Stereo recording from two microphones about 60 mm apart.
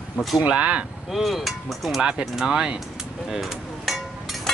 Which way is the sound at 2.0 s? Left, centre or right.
Centre.